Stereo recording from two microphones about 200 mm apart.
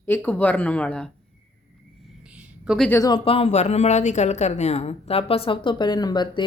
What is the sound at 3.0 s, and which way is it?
Speech, 25° left (ahead or behind).